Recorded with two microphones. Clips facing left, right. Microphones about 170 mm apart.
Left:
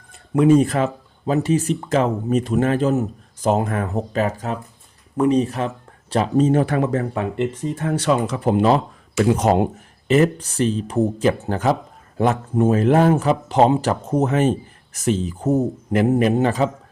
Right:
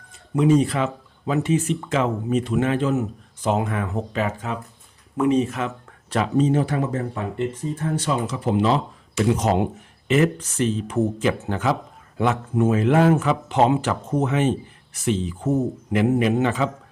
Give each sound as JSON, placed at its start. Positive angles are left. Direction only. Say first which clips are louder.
{"t": 0.1, "sound": "speech", "louder": "left 3 dB", "side_deg": 55}
{"t": 6.3, "sound": "speech", "louder": "left 3 dB", "side_deg": 50}
{"t": 8.3, "sound": "speech", "louder": "left 1 dB", "side_deg": 55}
{"t": 10.3, "sound": "speech", "louder": "left 2 dB", "side_deg": 35}